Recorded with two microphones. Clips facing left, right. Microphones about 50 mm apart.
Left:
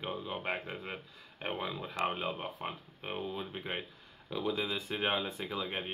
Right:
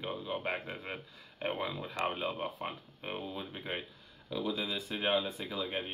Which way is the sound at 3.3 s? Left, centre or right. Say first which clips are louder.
Left 1 dB; centre.